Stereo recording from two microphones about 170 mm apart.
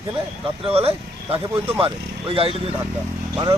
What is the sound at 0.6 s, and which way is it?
Speech, 35° right (ahead or behind).